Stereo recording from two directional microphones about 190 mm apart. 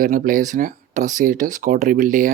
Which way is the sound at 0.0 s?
45° right (ahead or behind).